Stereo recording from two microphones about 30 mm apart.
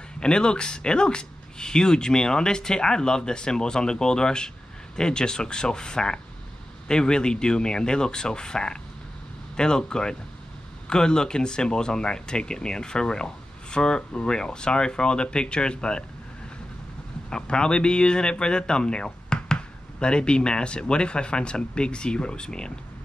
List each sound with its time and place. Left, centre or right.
0.2 s speech: left
17.4 s speech: left